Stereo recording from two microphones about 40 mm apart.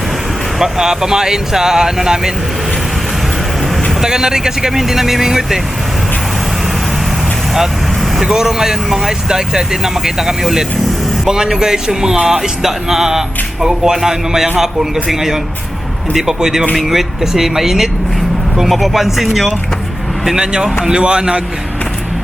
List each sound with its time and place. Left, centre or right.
0.6 s speech: centre
4.0 s speech: centre
8.2 s speech: centre
20.2 s speech: centre